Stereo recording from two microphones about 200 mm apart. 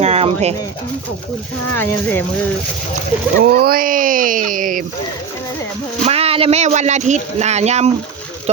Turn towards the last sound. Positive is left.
turn(degrees=-35)  # may be behind; listen again after turning